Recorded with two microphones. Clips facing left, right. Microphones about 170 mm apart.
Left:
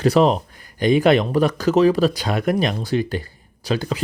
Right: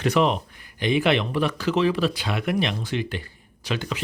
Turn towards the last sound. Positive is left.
turn(degrees=35)  # may be behind; listen again after turning